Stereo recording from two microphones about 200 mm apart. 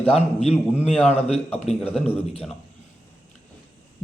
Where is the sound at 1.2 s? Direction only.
30° left (ahead or behind).